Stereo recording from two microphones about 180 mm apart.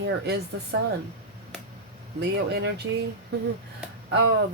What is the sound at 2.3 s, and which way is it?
Speech, 70° right (ahead or behind).